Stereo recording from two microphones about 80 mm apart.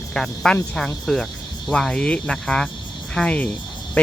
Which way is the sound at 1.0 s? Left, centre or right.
Centre.